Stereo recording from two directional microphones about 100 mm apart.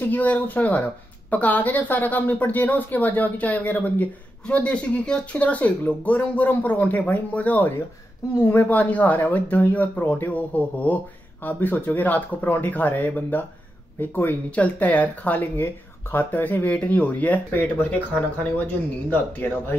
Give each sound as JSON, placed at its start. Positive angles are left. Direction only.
{"t": 0.0, "sound": "speech", "side_deg": 15}